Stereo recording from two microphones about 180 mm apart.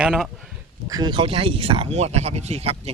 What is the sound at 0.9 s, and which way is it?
A man's voice, 25° right (ahead or behind).